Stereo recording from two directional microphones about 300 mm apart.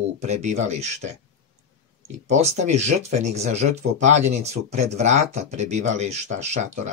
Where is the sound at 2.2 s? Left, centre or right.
Right.